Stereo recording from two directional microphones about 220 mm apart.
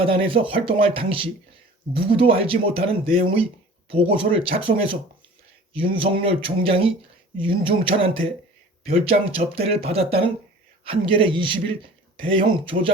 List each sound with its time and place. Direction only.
0.0 s speech: 25° right (ahead or behind)